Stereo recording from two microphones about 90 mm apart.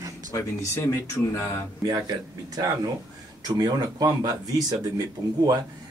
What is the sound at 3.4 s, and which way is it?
Speech, 50° right (ahead or behind).